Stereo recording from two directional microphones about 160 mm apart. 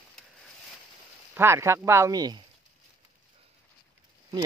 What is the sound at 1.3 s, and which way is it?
Speech, 15° right (ahead or behind).